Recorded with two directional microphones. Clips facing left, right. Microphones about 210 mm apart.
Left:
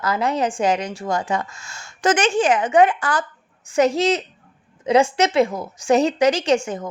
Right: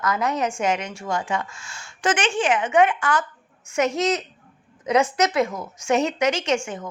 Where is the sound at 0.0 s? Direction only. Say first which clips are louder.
Left 2 dB; 30° left (ahead or behind).